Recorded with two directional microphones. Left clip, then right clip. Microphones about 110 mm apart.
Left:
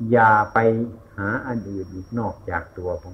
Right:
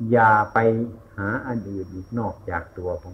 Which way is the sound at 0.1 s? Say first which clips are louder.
Left 1 dB; 30° right (ahead or behind).